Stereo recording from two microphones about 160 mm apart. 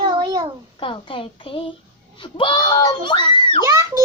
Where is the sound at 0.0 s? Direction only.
25° right (ahead or behind).